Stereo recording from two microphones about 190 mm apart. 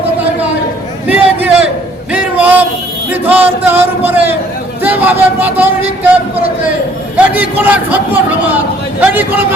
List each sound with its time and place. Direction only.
1.0 s a sound: 10° right (ahead or behind)
3.1 s a man's voice: 10° right (ahead or behind)
7.2 s a man's voice: 10° right (ahead or behind)